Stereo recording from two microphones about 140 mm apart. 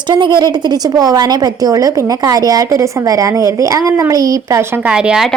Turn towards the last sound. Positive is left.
turn(degrees=-5)  # may be behind; listen again after turning